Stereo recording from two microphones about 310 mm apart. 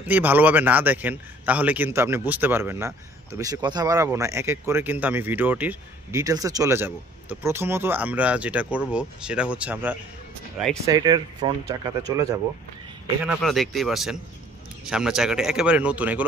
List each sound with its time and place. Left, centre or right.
0.1 s a man's voice: centre